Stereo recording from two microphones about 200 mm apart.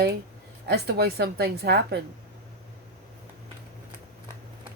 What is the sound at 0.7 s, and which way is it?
A woman's voice, 55° right (ahead or behind).